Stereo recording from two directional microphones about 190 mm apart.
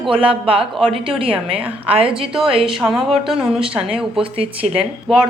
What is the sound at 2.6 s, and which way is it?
A woman's voice, centre (ahead or behind).